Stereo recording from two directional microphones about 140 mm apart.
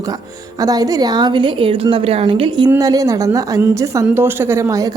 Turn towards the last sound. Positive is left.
turn(degrees=-20)  # may be behind; listen again after turning